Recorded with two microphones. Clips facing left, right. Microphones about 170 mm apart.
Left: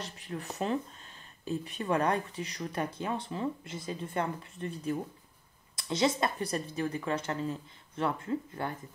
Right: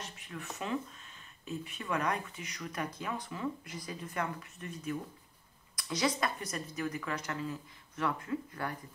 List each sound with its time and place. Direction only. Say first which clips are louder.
0.0 s speech: left 5 dB; 35° left (ahead or behind)